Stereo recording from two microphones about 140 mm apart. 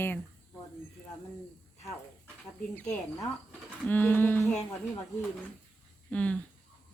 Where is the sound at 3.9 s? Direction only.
15° left (ahead or behind).